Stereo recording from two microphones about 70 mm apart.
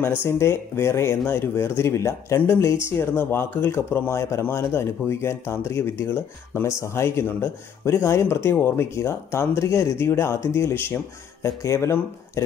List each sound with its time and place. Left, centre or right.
0.2 s speech: left